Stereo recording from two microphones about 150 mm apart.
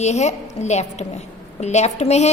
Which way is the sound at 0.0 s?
50° left (ahead or behind).